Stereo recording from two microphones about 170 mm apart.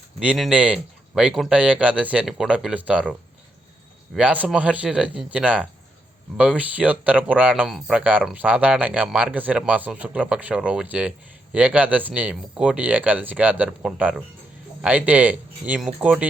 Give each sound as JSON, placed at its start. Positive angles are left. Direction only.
{"t": 0.2, "sound": "speech", "side_deg": -5}